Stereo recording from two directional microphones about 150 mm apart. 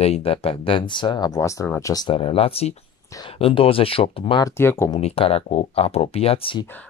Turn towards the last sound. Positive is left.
turn(degrees=35)  # may be behind; listen again after turning